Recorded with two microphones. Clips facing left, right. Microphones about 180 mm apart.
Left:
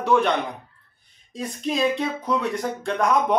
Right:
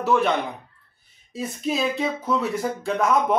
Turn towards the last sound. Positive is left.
turn(degrees=-5)  # may be behind; listen again after turning